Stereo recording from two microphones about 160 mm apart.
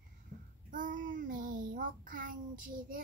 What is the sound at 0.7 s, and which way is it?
Child singing, 55° right (ahead or behind).